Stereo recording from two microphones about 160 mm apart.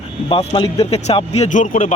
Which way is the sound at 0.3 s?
35° left (ahead or behind).